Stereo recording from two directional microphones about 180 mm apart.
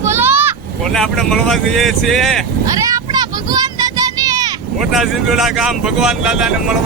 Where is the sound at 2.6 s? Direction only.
20° right (ahead or behind).